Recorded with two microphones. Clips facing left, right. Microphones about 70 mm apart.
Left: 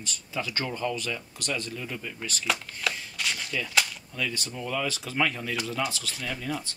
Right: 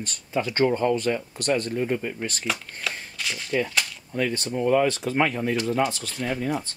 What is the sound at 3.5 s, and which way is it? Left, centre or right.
Speech, right.